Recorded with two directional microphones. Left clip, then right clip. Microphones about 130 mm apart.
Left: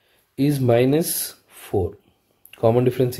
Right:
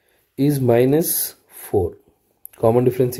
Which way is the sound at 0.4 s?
35° right (ahead or behind).